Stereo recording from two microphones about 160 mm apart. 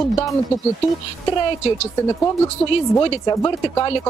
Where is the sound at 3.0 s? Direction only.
30° left (ahead or behind).